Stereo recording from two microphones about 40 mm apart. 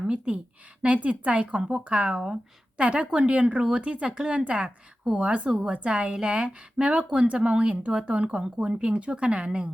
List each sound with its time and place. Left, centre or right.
0.3 s speech: right
6.1 s speech: right